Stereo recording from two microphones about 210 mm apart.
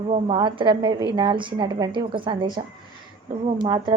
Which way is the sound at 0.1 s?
25° right (ahead or behind).